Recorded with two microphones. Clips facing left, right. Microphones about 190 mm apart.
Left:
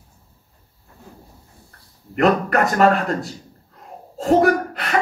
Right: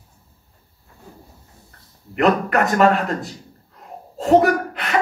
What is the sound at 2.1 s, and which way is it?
Speech, 40° left (ahead or behind).